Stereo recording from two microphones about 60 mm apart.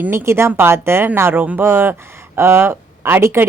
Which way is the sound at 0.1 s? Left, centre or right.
Right.